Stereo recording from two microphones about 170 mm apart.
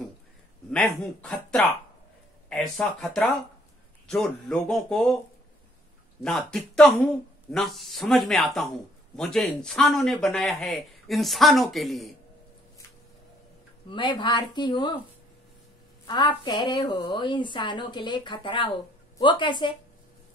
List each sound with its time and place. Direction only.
0.7 s speech: 5° left (ahead or behind)
6.2 s speech: 5° left (ahead or behind)
13.8 s a woman's voice: 30° left (ahead or behind)
16.1 s a woman's voice: 25° left (ahead or behind)